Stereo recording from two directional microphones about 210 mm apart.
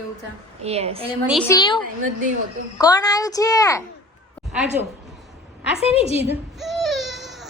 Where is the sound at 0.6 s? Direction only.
30° right (ahead or behind).